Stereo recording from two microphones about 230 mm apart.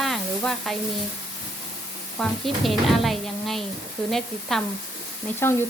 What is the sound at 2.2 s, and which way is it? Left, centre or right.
Speech, centre.